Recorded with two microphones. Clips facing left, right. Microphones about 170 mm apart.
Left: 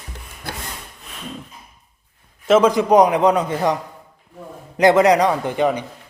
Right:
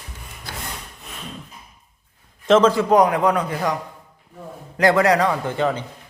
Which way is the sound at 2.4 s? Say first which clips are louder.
Left 1 dB; 10° left (ahead or behind).